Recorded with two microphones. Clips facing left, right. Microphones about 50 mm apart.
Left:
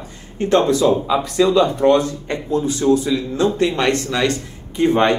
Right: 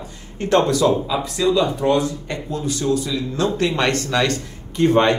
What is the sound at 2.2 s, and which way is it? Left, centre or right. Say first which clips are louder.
Speech: left 5 dB; left.